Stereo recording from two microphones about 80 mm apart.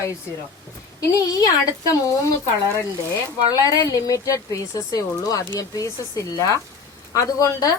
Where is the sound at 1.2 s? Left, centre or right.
Left.